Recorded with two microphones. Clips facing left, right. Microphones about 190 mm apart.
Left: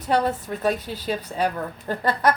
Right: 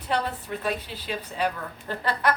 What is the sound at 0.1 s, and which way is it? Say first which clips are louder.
A woman's voice: left 6 dB; 40° left (ahead or behind).